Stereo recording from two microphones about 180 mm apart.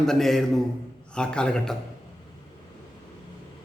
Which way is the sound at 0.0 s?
Centre (ahead or behind).